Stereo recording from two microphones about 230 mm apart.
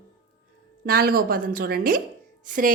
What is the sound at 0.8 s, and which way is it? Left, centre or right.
A woman's voice, right.